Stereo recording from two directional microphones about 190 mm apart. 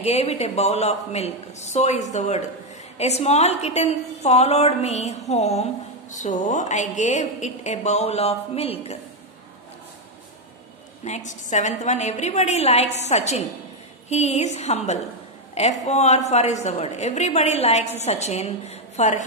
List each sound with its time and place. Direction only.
0.0 s a woman's voice: 35° left (ahead or behind)
11.1 s a woman's voice: 40° left (ahead or behind)